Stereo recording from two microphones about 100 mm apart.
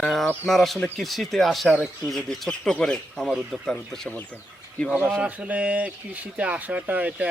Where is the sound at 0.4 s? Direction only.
Centre (ahead or behind).